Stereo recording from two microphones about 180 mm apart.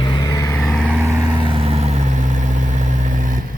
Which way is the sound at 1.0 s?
15° right (ahead or behind).